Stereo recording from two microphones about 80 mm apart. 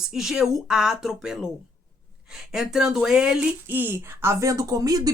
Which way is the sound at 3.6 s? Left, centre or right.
Right.